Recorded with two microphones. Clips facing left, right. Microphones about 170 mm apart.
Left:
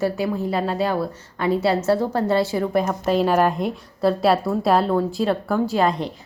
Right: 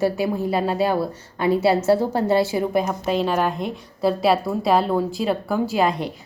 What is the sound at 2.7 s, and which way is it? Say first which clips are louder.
A woman's voice: left 1 dB; 5° right (ahead or behind).